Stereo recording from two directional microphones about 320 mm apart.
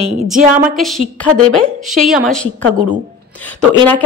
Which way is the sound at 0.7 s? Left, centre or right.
Centre.